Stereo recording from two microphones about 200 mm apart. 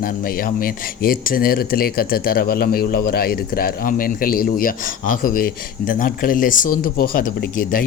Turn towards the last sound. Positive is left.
turn(degrees=45)  # may be behind; listen again after turning